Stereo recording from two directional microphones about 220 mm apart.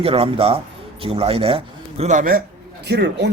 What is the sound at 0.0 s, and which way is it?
Speech, 25° right (ahead or behind).